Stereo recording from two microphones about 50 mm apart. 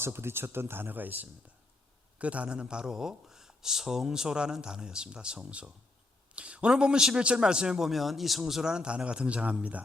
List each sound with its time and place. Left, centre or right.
0.0 s speech: right
2.1 s a man's voice: right
7.9 s speech: centre
8.7 s a man's voice: centre